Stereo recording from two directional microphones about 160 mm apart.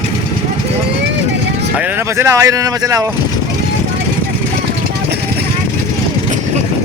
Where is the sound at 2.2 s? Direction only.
20° right (ahead or behind).